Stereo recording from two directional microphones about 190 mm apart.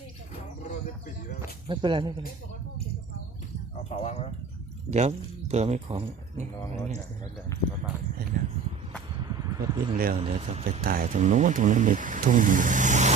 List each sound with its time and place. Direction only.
1.6 s speech: 25° right (ahead or behind)
3.8 s speech: 35° left (ahead or behind)
4.9 s speech: 35° right (ahead or behind)
9.2 s a sound: 20° right (ahead or behind)
9.9 s speech: 50° right (ahead or behind)
10.2 s speech: 35° right (ahead or behind)
10.8 s speech: 45° right (ahead or behind)